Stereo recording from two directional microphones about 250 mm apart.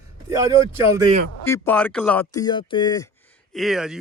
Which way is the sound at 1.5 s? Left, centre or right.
Centre.